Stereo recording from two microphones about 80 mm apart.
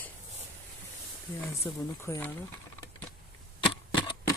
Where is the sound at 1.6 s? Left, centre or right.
Left.